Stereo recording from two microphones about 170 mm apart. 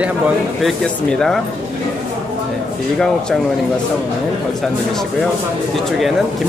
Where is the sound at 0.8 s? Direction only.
5° left (ahead or behind).